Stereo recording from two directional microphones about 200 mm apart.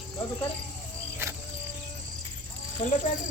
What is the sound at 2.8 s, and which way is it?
Speech, 25° left (ahead or behind).